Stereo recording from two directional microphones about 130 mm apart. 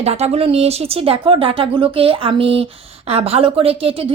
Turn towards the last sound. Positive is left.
turn(degrees=-45)  # may be behind; listen again after turning